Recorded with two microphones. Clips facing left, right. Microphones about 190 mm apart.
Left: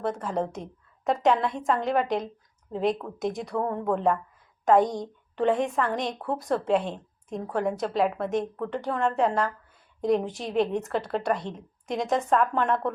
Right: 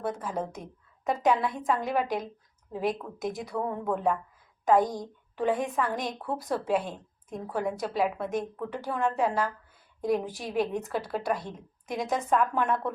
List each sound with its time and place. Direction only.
0.0 s a woman's voice: 5° right (ahead or behind)
4.8 s a woman's voice: 20° left (ahead or behind)
5.4 s a woman's voice: centre (ahead or behind)
6.8 s a woman's voice: 20° left (ahead or behind)
7.5 s a woman's voice: centre (ahead or behind)